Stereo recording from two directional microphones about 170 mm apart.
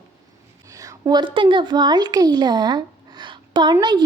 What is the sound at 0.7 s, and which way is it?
A woman's voice, 20° right (ahead or behind).